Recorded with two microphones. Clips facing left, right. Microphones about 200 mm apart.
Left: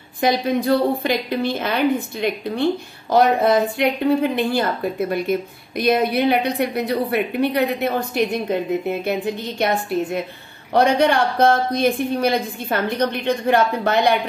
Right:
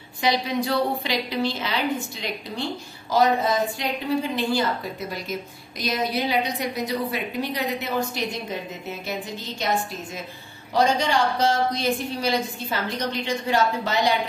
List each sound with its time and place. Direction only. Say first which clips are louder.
0.2 s a woman's voice: left 5 dB; 50° left (ahead or behind)